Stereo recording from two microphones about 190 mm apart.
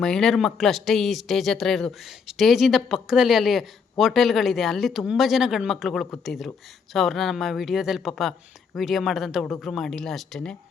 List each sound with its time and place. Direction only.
0.0 s speech: 5° left (ahead or behind)